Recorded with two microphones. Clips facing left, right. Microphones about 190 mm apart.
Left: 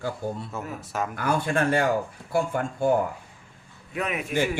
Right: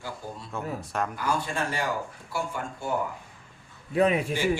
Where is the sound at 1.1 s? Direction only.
60° left (ahead or behind).